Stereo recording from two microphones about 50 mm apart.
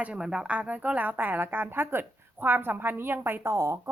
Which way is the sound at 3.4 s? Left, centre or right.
Right.